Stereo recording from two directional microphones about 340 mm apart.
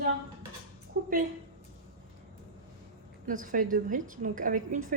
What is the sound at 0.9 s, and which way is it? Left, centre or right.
Speech, right.